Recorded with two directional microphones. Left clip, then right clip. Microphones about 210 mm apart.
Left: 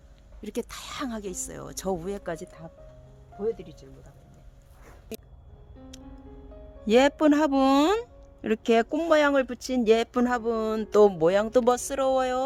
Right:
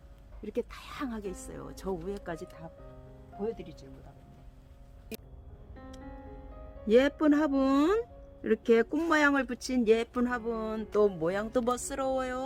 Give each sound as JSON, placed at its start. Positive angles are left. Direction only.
{"t": 0.4, "sound": "speech", "side_deg": 60}
{"t": 3.3, "sound": "speech", "side_deg": 40}
{"t": 6.8, "sound": "speech", "side_deg": 50}